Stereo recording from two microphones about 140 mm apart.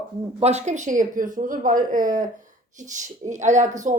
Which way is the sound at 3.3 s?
60° right (ahead or behind).